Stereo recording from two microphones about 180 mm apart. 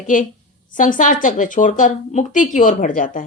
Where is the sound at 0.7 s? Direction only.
45° left (ahead or behind).